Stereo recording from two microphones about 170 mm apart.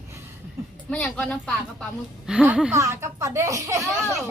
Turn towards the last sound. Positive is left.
turn(degrees=-20)  # may be behind; listen again after turning